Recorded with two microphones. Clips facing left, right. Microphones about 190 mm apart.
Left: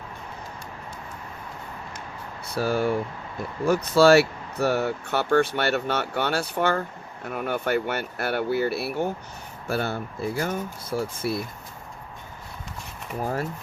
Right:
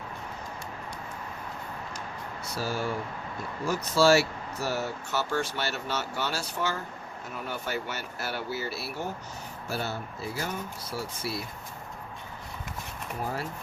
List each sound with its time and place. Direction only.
2.5 s speech: 60° left (ahead or behind)